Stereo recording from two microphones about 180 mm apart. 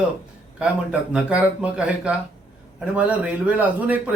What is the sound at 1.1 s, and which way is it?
Speech, 5° right (ahead or behind).